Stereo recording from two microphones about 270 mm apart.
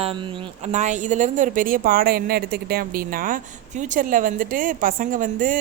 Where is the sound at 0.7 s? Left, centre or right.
Right.